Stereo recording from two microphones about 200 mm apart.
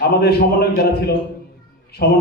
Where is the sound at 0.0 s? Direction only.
50° left (ahead or behind).